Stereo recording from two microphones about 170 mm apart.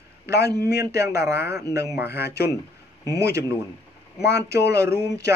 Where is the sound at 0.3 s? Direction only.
20° right (ahead or behind).